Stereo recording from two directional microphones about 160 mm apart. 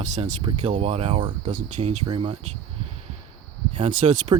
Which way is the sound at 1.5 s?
55° right (ahead or behind).